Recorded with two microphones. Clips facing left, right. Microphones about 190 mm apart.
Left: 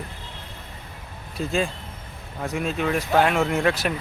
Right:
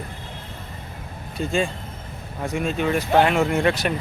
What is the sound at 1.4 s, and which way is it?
Speech, centre (ahead or behind).